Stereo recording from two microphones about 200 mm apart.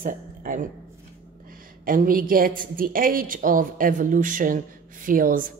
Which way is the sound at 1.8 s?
45° right (ahead or behind).